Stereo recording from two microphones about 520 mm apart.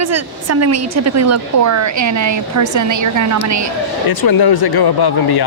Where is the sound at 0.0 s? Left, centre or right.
Right.